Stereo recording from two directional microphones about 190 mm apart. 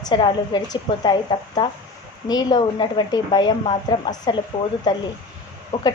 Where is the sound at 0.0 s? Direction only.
25° left (ahead or behind).